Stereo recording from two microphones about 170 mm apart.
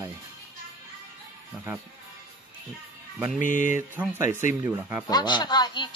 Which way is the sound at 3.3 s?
50° left (ahead or behind).